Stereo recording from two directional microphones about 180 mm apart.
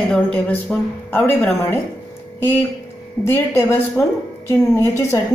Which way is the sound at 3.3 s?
15° left (ahead or behind).